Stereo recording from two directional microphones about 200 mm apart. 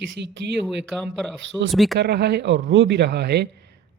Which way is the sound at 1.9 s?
55° right (ahead or behind).